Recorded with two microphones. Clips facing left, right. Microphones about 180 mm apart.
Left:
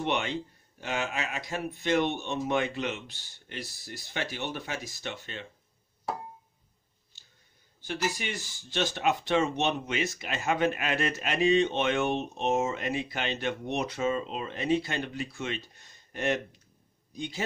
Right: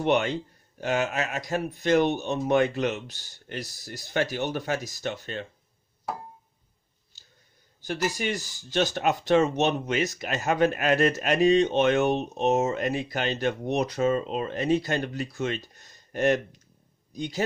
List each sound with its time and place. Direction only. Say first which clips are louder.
0.0 s speech: right 6 dB; 45° right (ahead or behind)
7.1 s a sound: right 3 dB; 40° right (ahead or behind)
7.8 s a man's voice: right 4 dB; 40° right (ahead or behind)